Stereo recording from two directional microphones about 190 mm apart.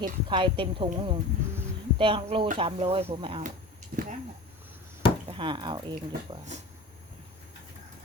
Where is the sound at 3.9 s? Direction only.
50° right (ahead or behind).